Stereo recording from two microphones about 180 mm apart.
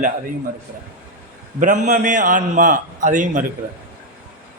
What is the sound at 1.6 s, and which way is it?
A man's voice, 45° right (ahead or behind).